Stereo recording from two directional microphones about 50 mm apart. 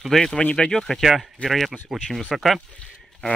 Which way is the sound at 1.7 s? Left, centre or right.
Centre.